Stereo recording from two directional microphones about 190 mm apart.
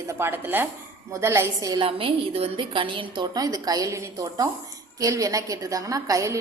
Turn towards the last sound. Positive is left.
turn(degrees=-15)  # may be behind; listen again after turning